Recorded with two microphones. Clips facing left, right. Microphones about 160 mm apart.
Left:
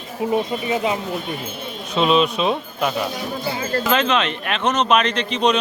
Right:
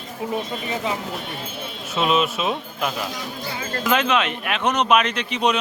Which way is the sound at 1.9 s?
5° right (ahead or behind).